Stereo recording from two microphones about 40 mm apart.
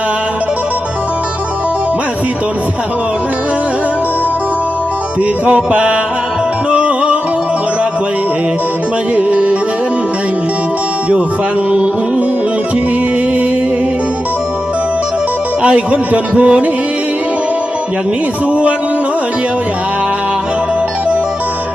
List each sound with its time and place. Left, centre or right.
5.5 s music: right
9.1 s a man's voice: right
15.6 s a man's voice: right